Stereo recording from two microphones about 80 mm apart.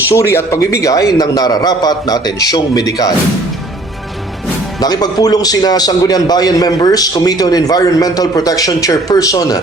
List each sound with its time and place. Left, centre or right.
0.1 s a man's voice: left
4.8 s a man's voice: left